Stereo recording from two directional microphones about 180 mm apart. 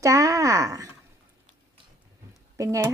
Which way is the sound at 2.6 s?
20° right (ahead or behind).